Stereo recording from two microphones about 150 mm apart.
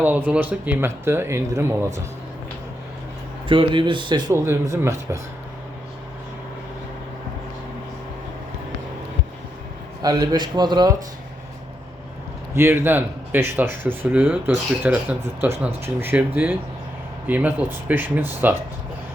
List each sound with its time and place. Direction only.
0.0 s speech: 10° right (ahead or behind)
3.5 s speech: 35° right (ahead or behind)
4.3 s speech: 15° right (ahead or behind)
10.0 s speech: 25° right (ahead or behind)
12.5 s speech: 15° right (ahead or behind)